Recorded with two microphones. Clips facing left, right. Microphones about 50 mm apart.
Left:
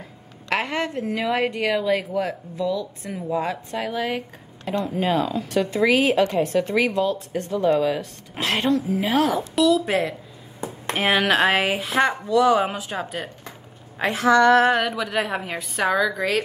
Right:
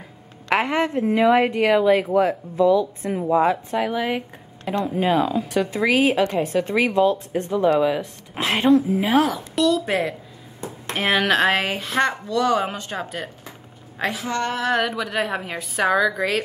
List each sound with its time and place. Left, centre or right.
0.5 s speech: centre
3.7 s a woman's voice: centre